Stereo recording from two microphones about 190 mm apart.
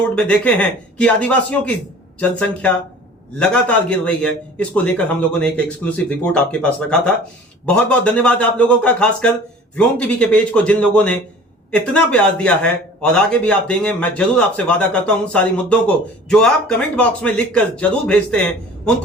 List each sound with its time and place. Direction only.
0.0 s a man's voice: 5° left (ahead or behind)